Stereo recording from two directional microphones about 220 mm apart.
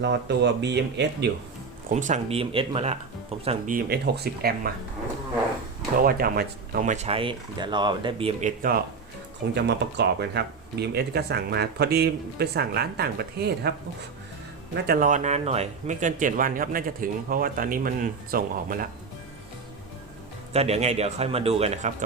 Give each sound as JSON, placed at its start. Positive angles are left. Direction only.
{"t": 0.0, "sound": "speech", "side_deg": -50}
{"t": 1.9, "sound": "speech", "side_deg": -35}
{"t": 6.1, "sound": "speech", "side_deg": -40}
{"t": 9.6, "sound": "speech", "side_deg": -50}
{"t": 14.8, "sound": "speech", "side_deg": -40}
{"t": 20.5, "sound": "speech", "side_deg": -30}